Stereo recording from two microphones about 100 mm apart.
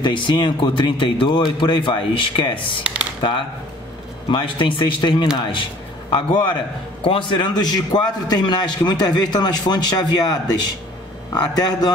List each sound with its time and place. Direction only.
0.0 s a man's voice: 50° left (ahead or behind)